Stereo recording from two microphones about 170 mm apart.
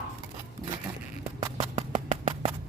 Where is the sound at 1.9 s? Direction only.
40° right (ahead or behind).